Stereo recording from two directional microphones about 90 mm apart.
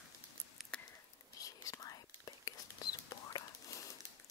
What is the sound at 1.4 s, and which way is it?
Whispering, 40° left (ahead or behind).